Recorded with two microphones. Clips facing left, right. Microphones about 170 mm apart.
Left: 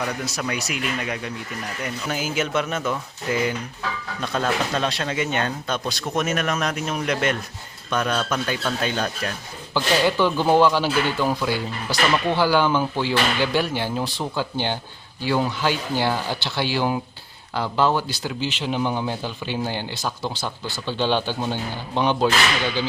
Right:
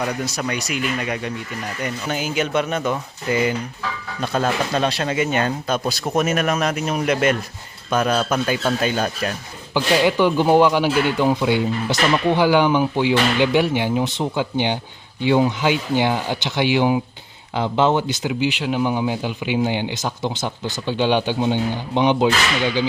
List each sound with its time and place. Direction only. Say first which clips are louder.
0.3 s speech: right 2 dB; centre (ahead or behind); by 22.9 s 15° right (ahead or behind)